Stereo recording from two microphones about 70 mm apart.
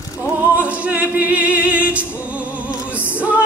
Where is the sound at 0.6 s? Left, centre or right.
Centre.